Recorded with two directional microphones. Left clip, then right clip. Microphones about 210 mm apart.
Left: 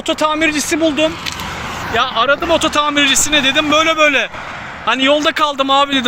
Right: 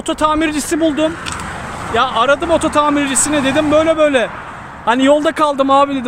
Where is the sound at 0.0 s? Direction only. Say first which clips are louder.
Even; 15° right (ahead or behind).